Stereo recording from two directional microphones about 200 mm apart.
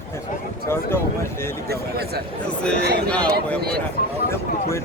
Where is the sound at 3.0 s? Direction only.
5° left (ahead or behind).